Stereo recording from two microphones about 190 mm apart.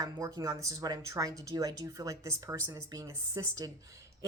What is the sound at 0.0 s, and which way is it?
Speech, 15° right (ahead or behind).